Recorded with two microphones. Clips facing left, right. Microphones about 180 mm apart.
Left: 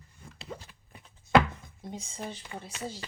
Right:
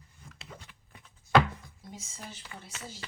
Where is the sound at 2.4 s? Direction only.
30° left (ahead or behind).